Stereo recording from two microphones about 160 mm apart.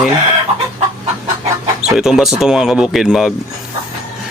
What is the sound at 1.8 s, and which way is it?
Speech, 5° right (ahead or behind).